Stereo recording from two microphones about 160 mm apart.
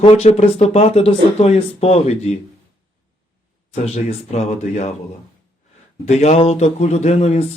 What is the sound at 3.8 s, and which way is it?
Speech, 40° left (ahead or behind).